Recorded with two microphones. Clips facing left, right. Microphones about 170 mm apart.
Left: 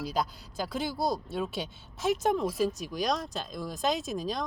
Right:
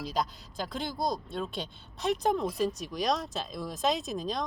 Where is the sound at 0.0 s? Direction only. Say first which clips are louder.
Left 1 dB; centre (ahead or behind).